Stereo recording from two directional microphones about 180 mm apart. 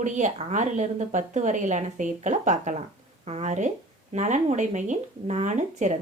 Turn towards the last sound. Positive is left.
turn(degrees=-45)  # may be behind; listen again after turning